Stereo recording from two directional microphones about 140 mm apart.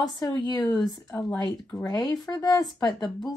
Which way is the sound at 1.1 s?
10° left (ahead or behind).